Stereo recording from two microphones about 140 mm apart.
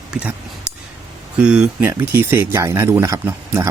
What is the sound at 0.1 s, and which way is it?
Speech, 10° right (ahead or behind).